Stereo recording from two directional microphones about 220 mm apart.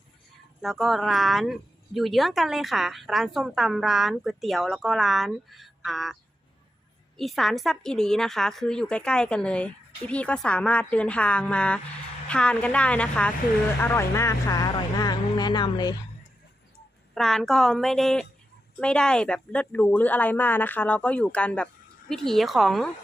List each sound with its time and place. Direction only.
0.6 s speech: centre (ahead or behind)
7.2 s speech: centre (ahead or behind); by 16.0 s 20° left (ahead or behind)
17.2 s speech: centre (ahead or behind)